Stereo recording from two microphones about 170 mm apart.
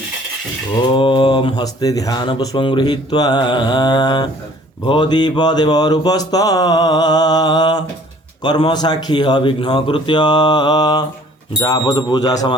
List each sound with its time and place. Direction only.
0.9 s speech: 30° left (ahead or behind)